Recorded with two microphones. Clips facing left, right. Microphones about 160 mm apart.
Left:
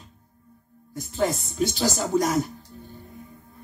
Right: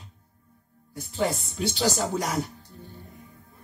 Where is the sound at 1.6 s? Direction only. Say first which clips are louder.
Left 2 dB; 45° left (ahead or behind).